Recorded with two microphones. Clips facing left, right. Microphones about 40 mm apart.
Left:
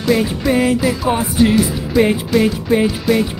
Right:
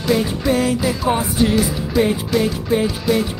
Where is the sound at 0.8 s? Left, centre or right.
Centre.